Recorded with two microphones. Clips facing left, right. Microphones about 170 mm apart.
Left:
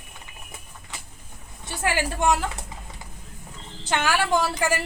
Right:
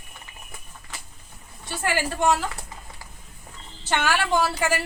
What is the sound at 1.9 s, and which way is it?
Speech, 15° left (ahead or behind).